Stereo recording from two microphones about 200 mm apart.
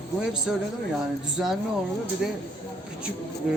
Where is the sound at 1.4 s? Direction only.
5° right (ahead or behind).